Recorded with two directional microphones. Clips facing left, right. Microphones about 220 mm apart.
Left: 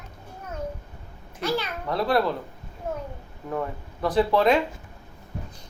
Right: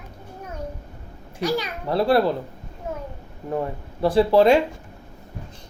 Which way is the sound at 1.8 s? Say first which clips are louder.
Right 6 dB; 30° right (ahead or behind).